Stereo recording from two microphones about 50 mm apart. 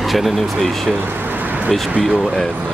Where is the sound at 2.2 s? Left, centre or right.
Centre.